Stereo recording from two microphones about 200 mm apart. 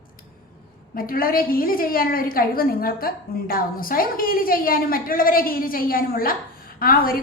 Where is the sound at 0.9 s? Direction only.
45° left (ahead or behind).